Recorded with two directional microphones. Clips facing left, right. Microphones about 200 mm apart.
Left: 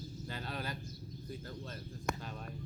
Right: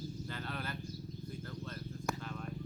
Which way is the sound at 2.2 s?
20° left (ahead or behind).